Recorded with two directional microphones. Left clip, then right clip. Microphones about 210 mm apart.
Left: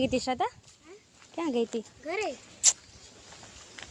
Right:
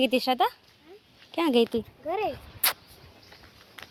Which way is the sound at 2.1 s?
10° right (ahead or behind).